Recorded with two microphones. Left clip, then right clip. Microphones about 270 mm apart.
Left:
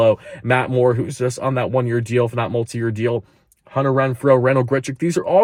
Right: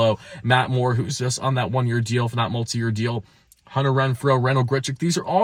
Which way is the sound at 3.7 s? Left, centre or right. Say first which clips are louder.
Left 4 dB; right.